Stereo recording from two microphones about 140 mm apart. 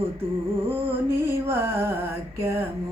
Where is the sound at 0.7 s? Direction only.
15° right (ahead or behind).